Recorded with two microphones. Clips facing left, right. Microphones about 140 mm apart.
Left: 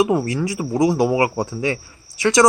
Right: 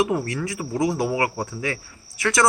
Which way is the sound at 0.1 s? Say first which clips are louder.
Left 5 dB; 25° left (ahead or behind).